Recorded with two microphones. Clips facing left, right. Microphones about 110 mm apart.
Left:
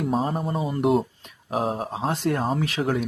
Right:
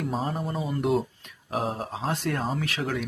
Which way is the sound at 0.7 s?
30° left (ahead or behind).